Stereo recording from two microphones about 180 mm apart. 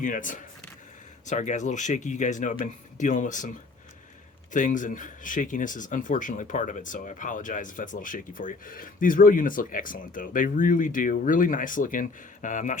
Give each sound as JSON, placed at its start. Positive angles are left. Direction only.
{"t": 0.0, "sound": "speech", "side_deg": 50}
{"t": 4.5, "sound": "speech", "side_deg": 45}